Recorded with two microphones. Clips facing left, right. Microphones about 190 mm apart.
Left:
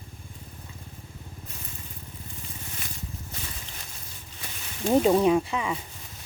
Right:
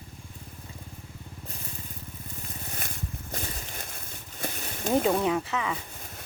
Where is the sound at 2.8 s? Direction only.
50° right (ahead or behind).